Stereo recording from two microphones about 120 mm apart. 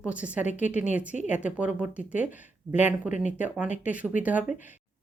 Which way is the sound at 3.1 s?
90° left.